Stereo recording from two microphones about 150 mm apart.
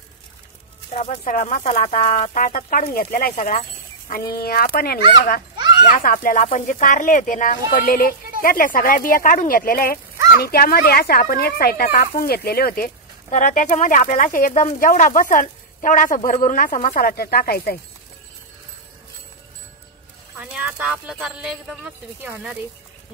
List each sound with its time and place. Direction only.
0.9 s speech: 55° left (ahead or behind); by 3.5 s 70° left (ahead or behind)
4.3 s speech: 90° left
6.0 s speech: 65° left (ahead or behind); by 17.7 s 90° left
20.3 s speech: 5° right (ahead or behind)